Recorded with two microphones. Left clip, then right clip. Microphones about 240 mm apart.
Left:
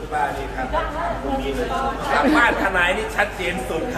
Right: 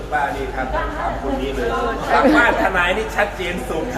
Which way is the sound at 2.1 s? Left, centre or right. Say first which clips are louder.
Right 3 dB; centre.